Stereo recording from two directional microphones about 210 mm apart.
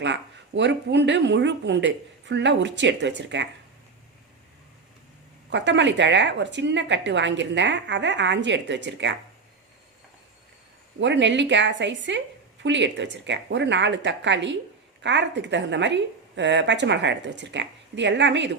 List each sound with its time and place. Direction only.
0.0 s a woman's voice: 55° right (ahead or behind)
5.5 s a woman's voice: 60° right (ahead or behind)
11.0 s a woman's voice: 60° right (ahead or behind)